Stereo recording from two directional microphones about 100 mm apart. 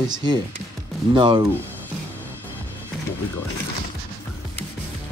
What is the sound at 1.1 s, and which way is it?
Speech, 50° right (ahead or behind).